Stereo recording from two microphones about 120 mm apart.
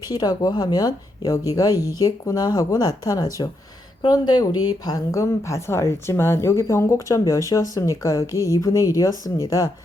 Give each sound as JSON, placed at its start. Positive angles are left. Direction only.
{"t": 0.0, "sound": "a woman's voice", "side_deg": 35}